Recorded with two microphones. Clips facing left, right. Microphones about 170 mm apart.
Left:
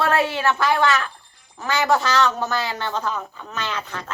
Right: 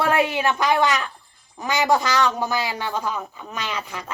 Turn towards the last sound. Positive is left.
turn(degrees=-10)  # may be behind; listen again after turning